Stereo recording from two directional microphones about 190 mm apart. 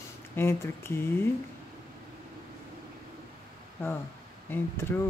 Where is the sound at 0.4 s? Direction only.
15° left (ahead or behind).